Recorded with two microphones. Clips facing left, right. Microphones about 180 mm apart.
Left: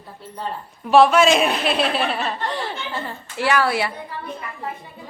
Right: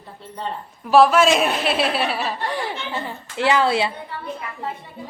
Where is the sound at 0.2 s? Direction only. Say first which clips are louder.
Even; 5° left (ahead or behind); by 3.9 s 20° right (ahead or behind).